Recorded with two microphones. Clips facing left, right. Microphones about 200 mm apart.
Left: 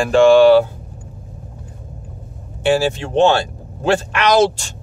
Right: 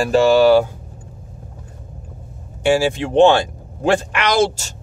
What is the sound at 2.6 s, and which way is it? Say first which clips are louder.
Speech: even; 10° right (ahead or behind).